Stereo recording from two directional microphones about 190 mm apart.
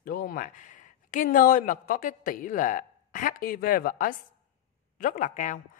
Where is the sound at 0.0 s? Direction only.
50° left (ahead or behind).